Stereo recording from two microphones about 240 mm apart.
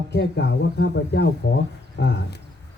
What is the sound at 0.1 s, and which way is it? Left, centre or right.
A man's voice, left.